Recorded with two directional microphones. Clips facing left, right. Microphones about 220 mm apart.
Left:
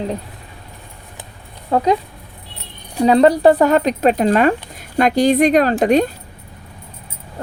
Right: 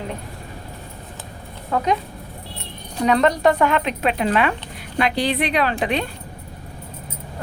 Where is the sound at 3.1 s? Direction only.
35° left (ahead or behind).